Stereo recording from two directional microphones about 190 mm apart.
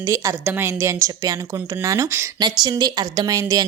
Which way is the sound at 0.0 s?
15° right (ahead or behind).